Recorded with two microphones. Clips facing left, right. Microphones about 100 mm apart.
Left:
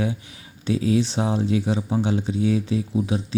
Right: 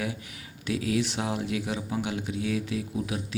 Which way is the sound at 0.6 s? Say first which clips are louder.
Left 6 dB; 30° left (ahead or behind).